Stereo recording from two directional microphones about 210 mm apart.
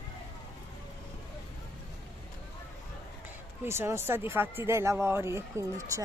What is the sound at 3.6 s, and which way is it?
Speech, 10° right (ahead or behind).